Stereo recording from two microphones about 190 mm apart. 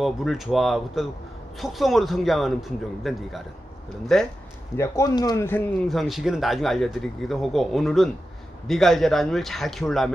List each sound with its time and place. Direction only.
0.0 s speech: centre (ahead or behind)
4.7 s speech: 15° left (ahead or behind)
5.9 s speech: centre (ahead or behind)